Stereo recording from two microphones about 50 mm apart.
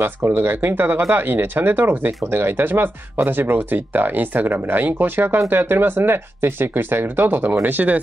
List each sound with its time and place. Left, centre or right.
0.0 s speech: right